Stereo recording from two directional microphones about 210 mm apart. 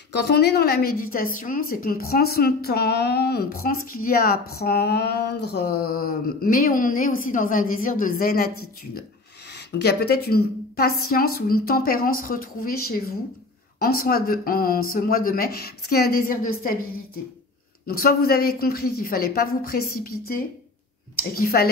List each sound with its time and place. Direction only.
0.2 s speech: 50° left (ahead or behind)
9.5 s a woman's voice: 55° left (ahead or behind)
13.7 s speech: 45° left (ahead or behind)